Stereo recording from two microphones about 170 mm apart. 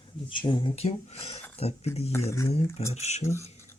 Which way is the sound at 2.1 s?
15° left (ahead or behind).